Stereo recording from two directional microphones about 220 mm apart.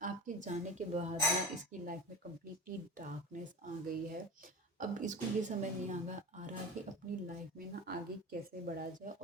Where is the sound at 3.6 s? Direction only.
40° right (ahead or behind).